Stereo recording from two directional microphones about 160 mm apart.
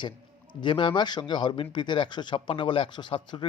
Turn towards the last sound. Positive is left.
turn(degrees=30)  # may be behind; listen again after turning